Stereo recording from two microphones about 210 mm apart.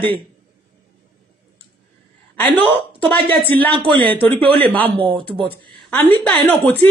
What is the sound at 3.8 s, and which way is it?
Speech, 25° right (ahead or behind).